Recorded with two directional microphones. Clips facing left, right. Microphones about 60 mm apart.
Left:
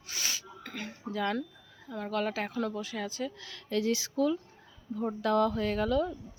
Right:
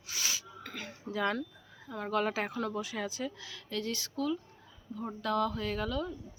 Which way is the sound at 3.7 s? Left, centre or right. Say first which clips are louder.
Left 7 dB; centre.